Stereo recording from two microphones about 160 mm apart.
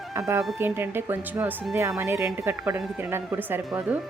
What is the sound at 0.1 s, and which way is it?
A woman's voice, 20° right (ahead or behind).